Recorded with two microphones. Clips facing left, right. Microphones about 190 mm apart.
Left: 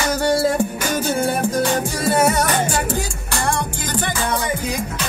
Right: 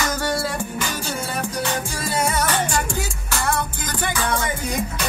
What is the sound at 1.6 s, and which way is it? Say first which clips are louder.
Music: left 6 dB; 45° left (ahead or behind).